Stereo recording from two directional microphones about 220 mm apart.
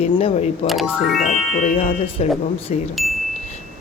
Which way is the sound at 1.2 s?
30° left (ahead or behind).